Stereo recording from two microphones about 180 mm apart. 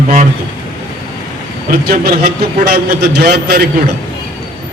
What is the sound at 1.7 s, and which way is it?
Speech, 50° right (ahead or behind).